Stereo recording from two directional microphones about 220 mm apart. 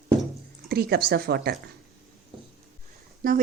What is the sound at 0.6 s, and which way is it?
Speech, 45° right (ahead or behind).